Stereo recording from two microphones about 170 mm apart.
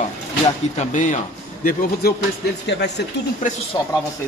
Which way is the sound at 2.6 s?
90° left.